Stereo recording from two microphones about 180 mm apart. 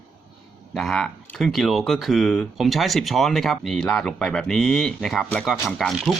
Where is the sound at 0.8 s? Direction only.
Centre (ahead or behind).